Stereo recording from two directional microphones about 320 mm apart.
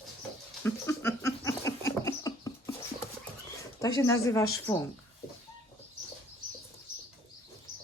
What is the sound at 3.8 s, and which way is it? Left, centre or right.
Speech, centre.